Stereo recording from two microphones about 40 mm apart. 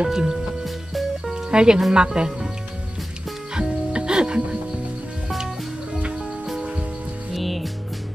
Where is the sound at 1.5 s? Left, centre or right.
Right.